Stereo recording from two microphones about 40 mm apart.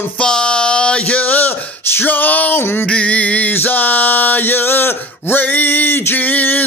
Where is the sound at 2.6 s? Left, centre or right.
Left.